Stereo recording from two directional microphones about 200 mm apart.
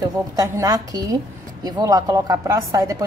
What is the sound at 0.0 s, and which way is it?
Speech, 20° right (ahead or behind).